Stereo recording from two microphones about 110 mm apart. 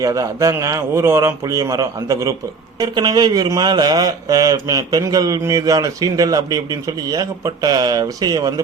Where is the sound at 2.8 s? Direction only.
40° right (ahead or behind).